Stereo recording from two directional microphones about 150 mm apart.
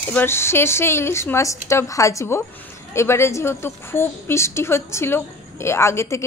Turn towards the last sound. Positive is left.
turn(degrees=20)  # may be behind; listen again after turning